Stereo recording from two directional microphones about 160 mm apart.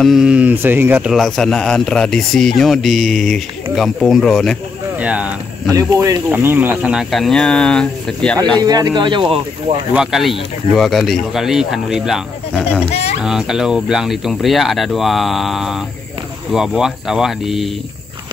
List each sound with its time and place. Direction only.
0.0 s speech: centre (ahead or behind)
1.1 s a man's voice: centre (ahead or behind)
4.9 s speech: 10° right (ahead or behind)
5.7 s a man's voice: 20° right (ahead or behind); by 8.4 s 5° left (ahead or behind)
8.5 s speech: 25° right (ahead or behind)
9.9 s a man's voice: centre (ahead or behind)